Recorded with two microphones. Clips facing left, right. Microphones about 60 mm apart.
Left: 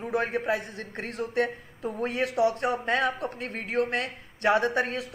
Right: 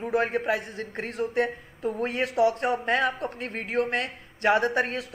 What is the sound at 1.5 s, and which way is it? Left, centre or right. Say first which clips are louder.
A man's voice: right 3 dB; right.